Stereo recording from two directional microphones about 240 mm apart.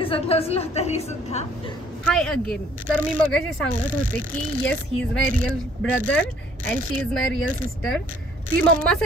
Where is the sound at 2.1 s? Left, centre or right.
Centre.